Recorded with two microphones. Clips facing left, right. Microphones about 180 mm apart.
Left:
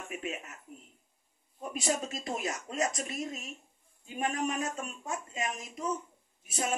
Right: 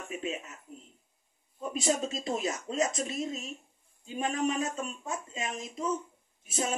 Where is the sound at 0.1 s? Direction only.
25° right (ahead or behind).